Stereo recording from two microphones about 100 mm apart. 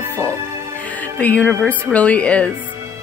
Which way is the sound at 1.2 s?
15° left (ahead or behind).